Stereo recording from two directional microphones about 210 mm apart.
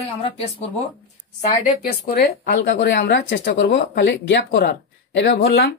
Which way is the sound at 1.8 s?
50° left (ahead or behind).